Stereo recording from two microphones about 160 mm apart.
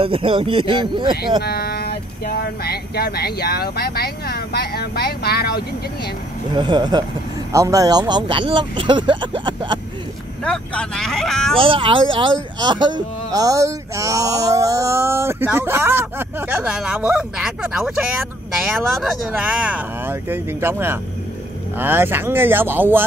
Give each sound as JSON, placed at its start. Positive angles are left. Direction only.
{"t": 0.0, "sound": "speech", "side_deg": -35}
{"t": 1.4, "sound": "speech", "side_deg": 75}
{"t": 6.5, "sound": "speech", "side_deg": -30}
{"t": 10.4, "sound": "speech", "side_deg": 5}
{"t": 11.5, "sound": "speech", "side_deg": -35}